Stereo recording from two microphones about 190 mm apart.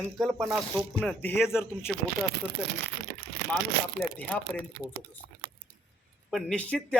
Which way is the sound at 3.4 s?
70° right (ahead or behind).